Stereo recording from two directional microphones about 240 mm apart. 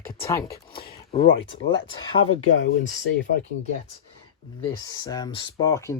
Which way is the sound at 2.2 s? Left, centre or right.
Left.